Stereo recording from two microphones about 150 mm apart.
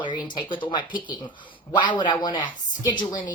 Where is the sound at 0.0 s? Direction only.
30° left (ahead or behind).